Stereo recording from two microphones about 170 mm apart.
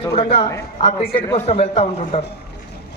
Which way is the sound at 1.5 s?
40° left (ahead or behind).